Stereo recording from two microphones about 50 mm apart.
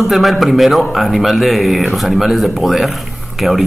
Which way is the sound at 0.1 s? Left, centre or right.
Centre.